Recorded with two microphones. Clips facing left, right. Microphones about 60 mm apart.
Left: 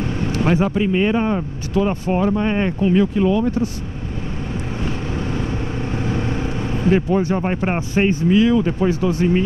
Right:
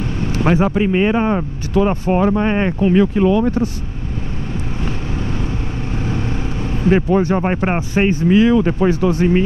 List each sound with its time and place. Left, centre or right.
0.3 s speech: right
2.0 s speech: right
2.4 s speech: right
2.9 s speech: right
6.1 s vehicle: centre
7.1 s speech: right
7.4 s speech: right
8.3 s speech: right